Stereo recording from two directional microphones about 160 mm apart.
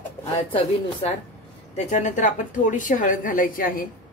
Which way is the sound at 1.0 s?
40° left (ahead or behind).